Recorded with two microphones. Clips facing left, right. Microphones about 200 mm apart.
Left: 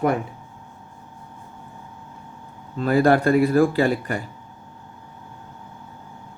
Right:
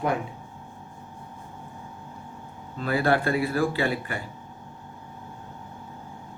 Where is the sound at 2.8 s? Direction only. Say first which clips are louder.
Left 6 dB; 45° left (ahead or behind).